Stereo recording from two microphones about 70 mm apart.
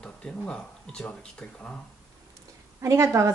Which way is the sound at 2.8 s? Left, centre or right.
Right.